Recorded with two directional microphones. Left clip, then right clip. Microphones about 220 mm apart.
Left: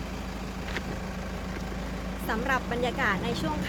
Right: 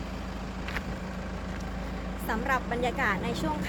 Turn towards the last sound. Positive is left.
turn(degrees=0)  # may be behind; listen again after turning